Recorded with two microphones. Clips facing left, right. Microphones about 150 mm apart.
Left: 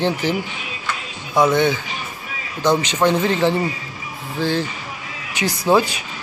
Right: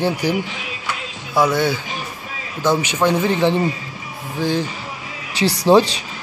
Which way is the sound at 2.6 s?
15° left (ahead or behind).